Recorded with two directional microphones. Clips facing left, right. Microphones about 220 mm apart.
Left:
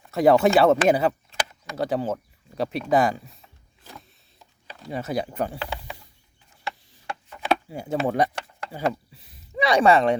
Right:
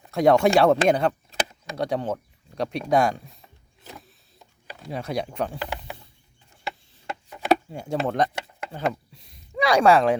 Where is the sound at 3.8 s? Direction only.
Centre (ahead or behind).